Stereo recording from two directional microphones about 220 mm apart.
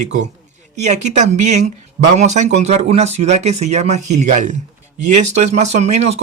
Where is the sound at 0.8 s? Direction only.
30° right (ahead or behind).